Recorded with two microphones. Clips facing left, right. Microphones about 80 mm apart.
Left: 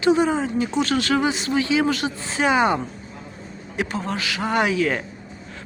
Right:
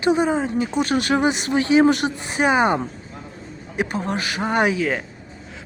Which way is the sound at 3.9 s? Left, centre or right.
Centre.